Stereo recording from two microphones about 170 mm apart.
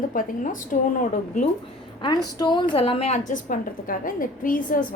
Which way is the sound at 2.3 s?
25° left (ahead or behind).